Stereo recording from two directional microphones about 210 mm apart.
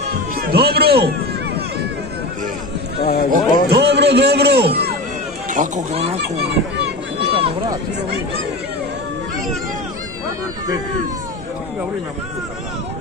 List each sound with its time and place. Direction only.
0.4 s speech: 50° right (ahead or behind)
3.0 s speech: 45° left (ahead or behind)
3.3 s a man's voice: 50° right (ahead or behind)
5.5 s speech: 35° right (ahead or behind)
7.3 s run: 25° right (ahead or behind)